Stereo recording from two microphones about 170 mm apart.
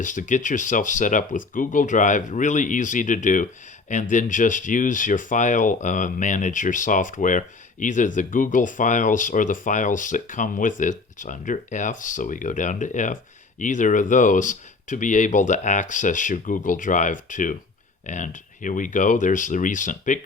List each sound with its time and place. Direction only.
0.0 s speech: 50° left (ahead or behind)